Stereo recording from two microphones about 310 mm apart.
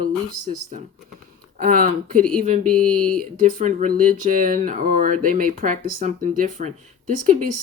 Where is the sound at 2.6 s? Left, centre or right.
Centre.